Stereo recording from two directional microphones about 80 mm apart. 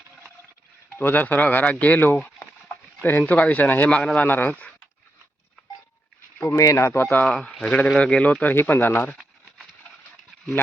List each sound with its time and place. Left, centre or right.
0.9 s speech: left
6.6 s speech: left
7.3 s speech: centre